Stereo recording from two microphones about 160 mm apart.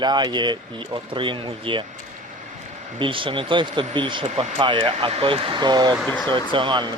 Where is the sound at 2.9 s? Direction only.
30° right (ahead or behind).